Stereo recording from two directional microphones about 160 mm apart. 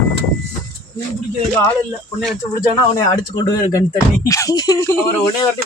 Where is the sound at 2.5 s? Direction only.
25° left (ahead or behind).